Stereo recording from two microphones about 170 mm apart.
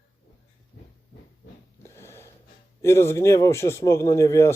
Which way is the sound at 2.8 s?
15° left (ahead or behind).